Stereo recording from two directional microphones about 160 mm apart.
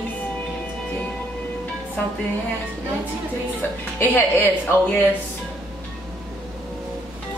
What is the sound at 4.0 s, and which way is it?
Speech, 10° left (ahead or behind).